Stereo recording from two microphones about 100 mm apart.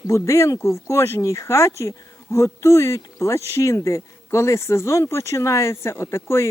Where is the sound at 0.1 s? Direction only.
30° left (ahead or behind).